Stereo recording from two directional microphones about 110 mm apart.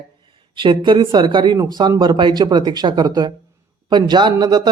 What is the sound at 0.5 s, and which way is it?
A man's voice, 50° right (ahead or behind).